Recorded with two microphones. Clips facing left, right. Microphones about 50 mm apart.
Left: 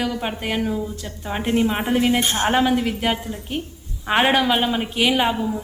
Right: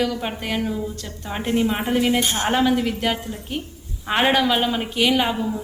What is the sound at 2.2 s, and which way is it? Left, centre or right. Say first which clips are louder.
Speech: left 1 dB; left.